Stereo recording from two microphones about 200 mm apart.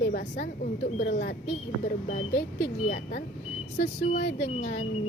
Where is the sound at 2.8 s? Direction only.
40° left (ahead or behind).